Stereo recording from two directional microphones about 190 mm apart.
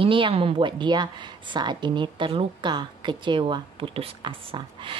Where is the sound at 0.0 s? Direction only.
30° right (ahead or behind).